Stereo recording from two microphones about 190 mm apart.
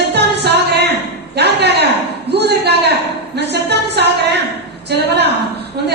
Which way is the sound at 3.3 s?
60° right (ahead or behind).